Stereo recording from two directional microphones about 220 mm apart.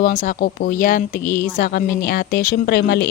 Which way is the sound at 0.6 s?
40° left (ahead or behind).